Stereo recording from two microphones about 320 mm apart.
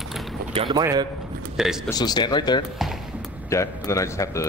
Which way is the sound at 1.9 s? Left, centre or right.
Centre.